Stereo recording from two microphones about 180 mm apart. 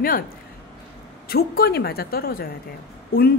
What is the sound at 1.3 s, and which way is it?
A woman's voice, 60° left (ahead or behind).